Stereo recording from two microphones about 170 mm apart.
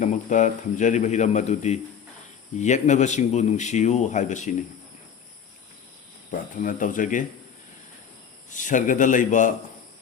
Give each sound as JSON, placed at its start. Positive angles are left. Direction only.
{"t": 0.0, "sound": "a man's voice", "side_deg": 45}
{"t": 6.6, "sound": "a man's voice", "side_deg": 50}
{"t": 8.4, "sound": "a man's voice", "side_deg": 50}